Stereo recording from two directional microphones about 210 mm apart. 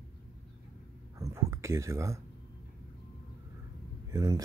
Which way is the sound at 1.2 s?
15° right (ahead or behind).